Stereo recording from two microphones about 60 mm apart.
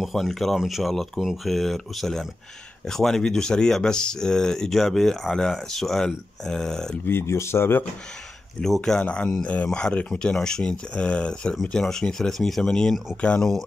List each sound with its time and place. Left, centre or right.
0.0 s speech: centre
7.1 s speech: left
8.5 s speech: centre
9.0 s speech: centre